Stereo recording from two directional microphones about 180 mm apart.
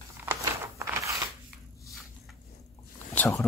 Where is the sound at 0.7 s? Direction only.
15° right (ahead or behind).